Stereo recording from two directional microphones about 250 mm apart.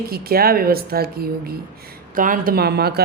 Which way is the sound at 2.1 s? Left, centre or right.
Right.